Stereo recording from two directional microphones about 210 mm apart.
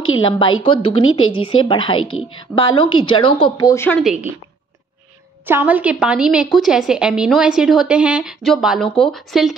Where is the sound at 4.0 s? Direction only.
5° right (ahead or behind).